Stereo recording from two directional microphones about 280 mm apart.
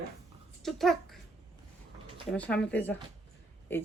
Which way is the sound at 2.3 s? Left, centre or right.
Centre.